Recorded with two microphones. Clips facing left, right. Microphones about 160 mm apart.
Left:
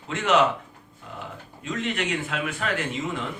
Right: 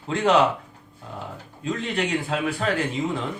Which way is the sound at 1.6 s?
35° right (ahead or behind).